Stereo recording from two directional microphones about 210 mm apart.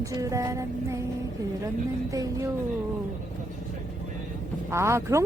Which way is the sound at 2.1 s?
15° right (ahead or behind).